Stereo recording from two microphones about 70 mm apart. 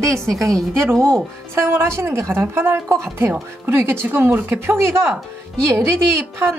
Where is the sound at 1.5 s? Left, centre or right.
Right.